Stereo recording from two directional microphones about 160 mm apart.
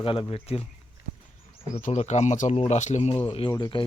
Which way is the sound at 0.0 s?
35° left (ahead or behind).